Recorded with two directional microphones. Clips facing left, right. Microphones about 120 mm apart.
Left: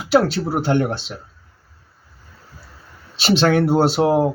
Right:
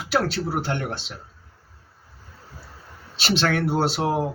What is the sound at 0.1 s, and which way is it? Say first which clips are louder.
Speech: left 7 dB; 20° left (ahead or behind).